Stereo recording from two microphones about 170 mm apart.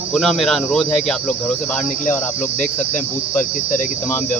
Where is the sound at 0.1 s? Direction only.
Centre (ahead or behind).